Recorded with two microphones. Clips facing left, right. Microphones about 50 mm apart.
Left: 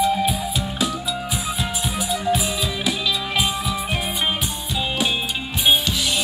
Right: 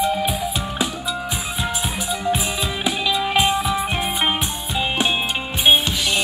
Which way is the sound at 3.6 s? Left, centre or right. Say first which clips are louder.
Right 4 dB; centre.